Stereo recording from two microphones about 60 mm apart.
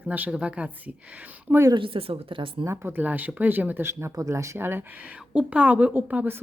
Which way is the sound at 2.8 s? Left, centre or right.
Right.